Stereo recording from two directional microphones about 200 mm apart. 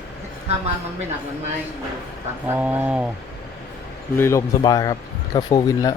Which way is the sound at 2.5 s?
10° right (ahead or behind).